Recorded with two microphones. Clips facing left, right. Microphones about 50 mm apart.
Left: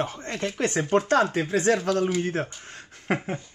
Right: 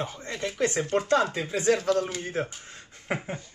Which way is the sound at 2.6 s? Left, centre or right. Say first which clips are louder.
Left 5 dB; left.